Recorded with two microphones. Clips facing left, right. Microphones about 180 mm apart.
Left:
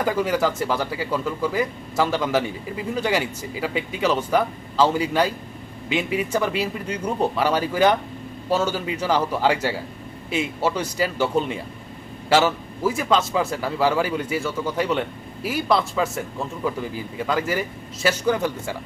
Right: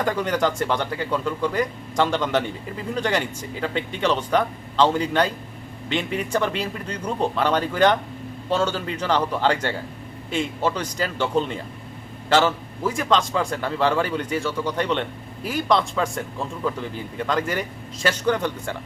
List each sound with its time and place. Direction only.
0.0 s speech: 5° left (ahead or behind)